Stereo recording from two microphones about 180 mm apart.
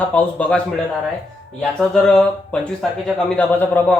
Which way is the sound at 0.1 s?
10° left (ahead or behind).